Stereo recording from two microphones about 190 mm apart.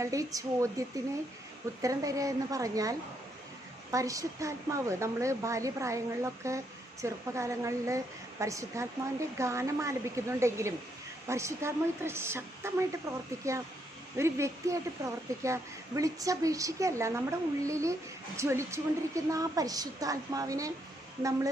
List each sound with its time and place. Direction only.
0.0 s a woman's voice: 15° right (ahead or behind)
3.9 s a woman's voice: 15° right (ahead or behind)